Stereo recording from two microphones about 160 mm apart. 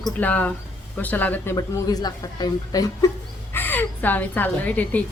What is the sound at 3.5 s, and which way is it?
A woman's voice, 10° left (ahead or behind).